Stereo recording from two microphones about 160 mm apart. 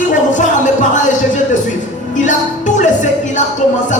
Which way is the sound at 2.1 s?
50° left (ahead or behind).